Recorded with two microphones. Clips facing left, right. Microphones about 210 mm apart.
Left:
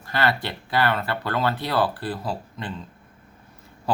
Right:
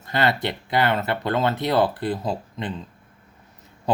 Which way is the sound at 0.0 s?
20° right (ahead or behind).